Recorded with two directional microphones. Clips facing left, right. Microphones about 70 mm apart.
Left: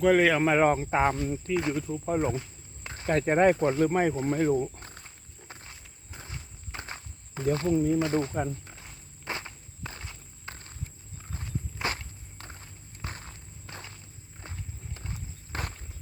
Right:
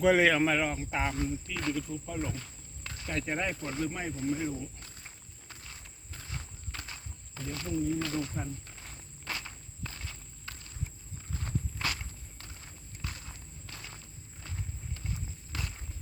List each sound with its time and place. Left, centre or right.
0.0 s speech: centre
0.3 s speech: centre
0.6 s speech: left
3.8 s speech: left
5.5 s walk: left
7.9 s speech: left
8.6 s walk: centre; by 10.8 s left
11.8 s walk: centre
12.4 s walk: left
14.4 s walk: left